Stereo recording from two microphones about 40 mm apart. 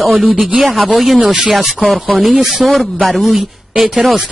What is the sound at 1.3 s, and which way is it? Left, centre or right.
Speech, centre.